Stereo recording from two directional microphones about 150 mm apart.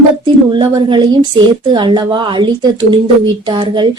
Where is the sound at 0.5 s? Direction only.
30° right (ahead or behind).